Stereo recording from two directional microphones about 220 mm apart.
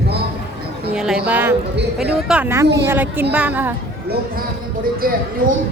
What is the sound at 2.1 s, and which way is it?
A woman's voice, 5° right (ahead or behind).